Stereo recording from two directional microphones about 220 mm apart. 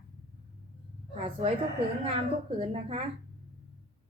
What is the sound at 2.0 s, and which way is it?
Speech, 25° right (ahead or behind).